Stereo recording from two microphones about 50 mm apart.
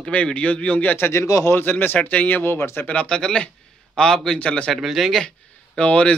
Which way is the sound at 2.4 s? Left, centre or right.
Left.